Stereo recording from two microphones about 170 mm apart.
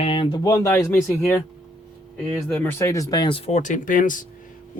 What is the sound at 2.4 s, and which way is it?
Speech, 10° left (ahead or behind).